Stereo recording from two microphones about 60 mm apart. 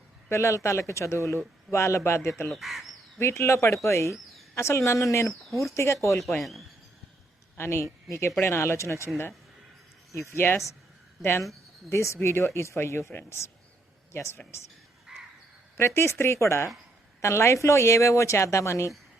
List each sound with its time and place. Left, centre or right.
0.3 s speech: left
2.5 s speech: centre
3.2 s speech: left
6.4 s speech: centre
7.5 s speech: left
10.3 s speech: left
11.9 s speech: left
15.1 s crow: centre
16.0 s speech: left